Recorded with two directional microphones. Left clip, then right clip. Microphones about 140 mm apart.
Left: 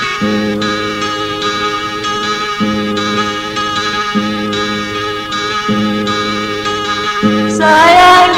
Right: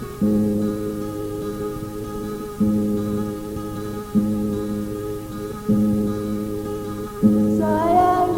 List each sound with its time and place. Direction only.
7.6 s music: 15° right (ahead or behind)